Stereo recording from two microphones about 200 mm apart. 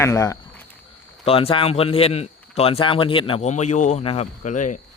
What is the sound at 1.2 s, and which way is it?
Speech, 30° left (ahead or behind).